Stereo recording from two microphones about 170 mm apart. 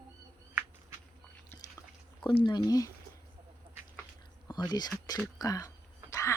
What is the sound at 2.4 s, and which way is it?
Speech, 25° left (ahead or behind).